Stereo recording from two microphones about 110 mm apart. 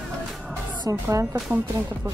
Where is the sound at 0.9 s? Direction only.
30° right (ahead or behind).